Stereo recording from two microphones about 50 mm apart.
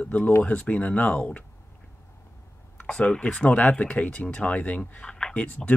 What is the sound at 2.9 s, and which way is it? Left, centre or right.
Speech, left.